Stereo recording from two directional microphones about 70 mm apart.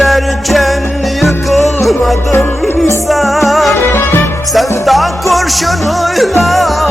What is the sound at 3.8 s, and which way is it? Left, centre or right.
Music, left.